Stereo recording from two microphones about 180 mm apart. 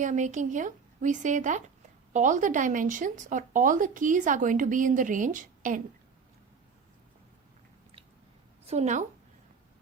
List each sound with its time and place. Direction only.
0.0 s speech: 45° right (ahead or behind)
8.6 s a woman's voice: 40° right (ahead or behind)